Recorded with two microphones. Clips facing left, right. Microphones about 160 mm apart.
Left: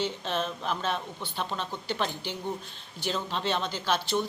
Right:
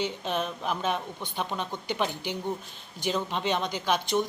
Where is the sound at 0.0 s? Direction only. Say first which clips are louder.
Right 1 dB; 10° right (ahead or behind).